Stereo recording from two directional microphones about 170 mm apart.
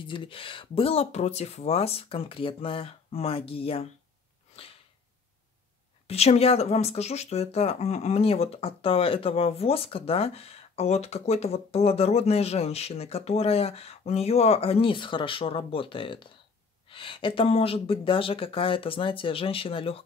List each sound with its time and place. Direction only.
0.0 s speech: 30° left (ahead or behind)
6.0 s speech: 40° left (ahead or behind)